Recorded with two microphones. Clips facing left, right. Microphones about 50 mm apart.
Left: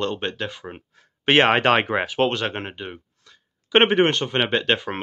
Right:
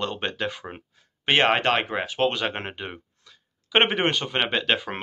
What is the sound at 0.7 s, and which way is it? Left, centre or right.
Speech, centre.